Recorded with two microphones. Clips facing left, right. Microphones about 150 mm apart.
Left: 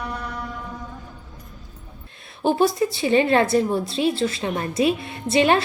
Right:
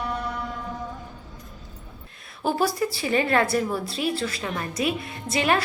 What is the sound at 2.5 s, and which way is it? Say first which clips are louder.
A woman's voice: left 5 dB; 25° left (ahead or behind).